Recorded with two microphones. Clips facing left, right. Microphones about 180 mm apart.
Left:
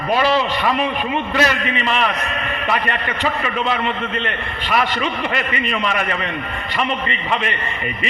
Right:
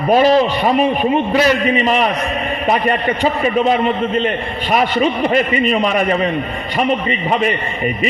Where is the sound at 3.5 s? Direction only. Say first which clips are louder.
Right 7 dB; 45° right (ahead or behind).